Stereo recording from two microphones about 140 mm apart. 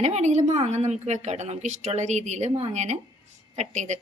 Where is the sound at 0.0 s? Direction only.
55° right (ahead or behind).